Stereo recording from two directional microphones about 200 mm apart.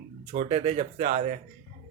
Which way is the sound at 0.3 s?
35° right (ahead or behind).